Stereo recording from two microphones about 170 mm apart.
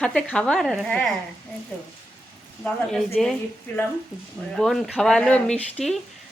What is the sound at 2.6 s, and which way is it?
Speech, centre (ahead or behind).